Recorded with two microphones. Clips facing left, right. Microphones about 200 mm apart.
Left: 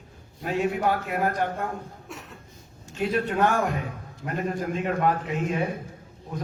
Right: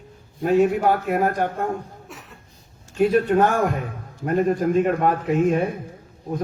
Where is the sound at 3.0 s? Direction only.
45° right (ahead or behind).